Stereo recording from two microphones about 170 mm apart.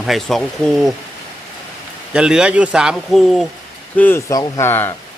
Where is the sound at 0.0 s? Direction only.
Centre (ahead or behind).